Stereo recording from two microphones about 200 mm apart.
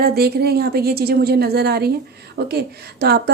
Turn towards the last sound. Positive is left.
turn(degrees=-50)  # may be behind; listen again after turning